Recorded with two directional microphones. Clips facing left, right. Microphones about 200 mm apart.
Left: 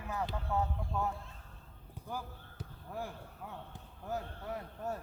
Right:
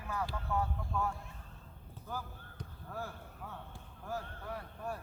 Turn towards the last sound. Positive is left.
turn(degrees=20)  # may be behind; listen again after turning